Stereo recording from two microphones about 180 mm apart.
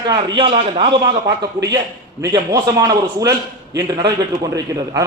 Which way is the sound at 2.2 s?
20° right (ahead or behind).